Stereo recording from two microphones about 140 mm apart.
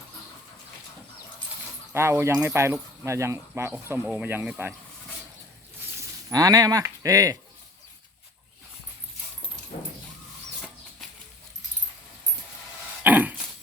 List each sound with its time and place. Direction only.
1.9 s speech: 20° right (ahead or behind)
6.0 s speech: 25° right (ahead or behind)
13.0 s dog: 10° right (ahead or behind)